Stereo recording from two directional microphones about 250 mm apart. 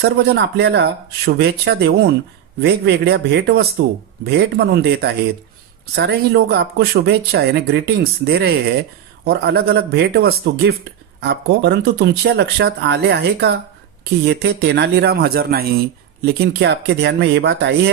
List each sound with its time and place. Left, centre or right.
0.0 s speech: right